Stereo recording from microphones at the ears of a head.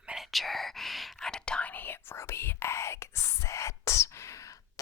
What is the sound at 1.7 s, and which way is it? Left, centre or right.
Whispering, left.